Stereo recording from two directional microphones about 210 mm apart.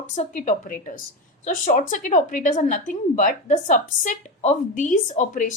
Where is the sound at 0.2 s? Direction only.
35° left (ahead or behind).